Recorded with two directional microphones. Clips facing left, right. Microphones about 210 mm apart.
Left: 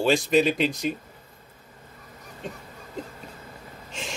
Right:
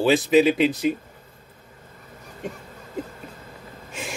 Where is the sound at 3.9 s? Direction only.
5° right (ahead or behind).